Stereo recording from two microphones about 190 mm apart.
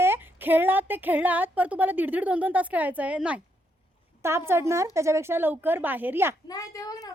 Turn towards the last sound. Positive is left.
turn(degrees=20)  # may be behind; listen again after turning